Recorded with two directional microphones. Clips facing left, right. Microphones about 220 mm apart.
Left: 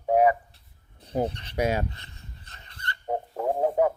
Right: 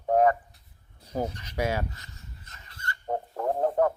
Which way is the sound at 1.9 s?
30° left (ahead or behind).